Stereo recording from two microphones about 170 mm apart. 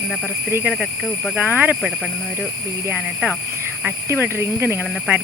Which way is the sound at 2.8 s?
10° right (ahead or behind).